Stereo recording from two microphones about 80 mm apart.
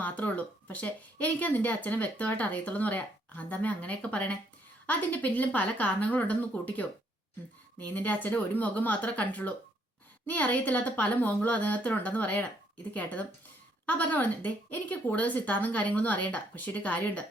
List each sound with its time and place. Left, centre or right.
0.0 s speech: centre
7.9 s speech: left